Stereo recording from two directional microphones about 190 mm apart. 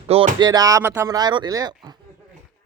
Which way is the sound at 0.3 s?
20° right (ahead or behind).